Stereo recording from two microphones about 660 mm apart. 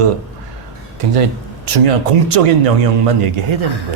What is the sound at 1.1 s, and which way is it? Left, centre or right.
Speech, right.